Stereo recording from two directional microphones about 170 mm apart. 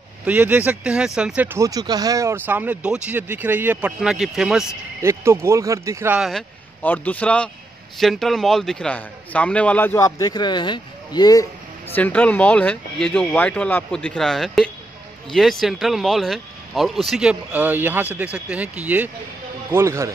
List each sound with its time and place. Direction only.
0.2 s speech: 10° right (ahead or behind)
5.0 s speech: 15° right (ahead or behind)
6.8 s a man's voice: 10° left (ahead or behind)
11.9 s a man's voice: 10° left (ahead or behind); by 20.1 s 15° right (ahead or behind)